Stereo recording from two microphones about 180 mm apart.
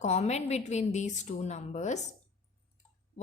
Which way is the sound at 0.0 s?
40° left (ahead or behind).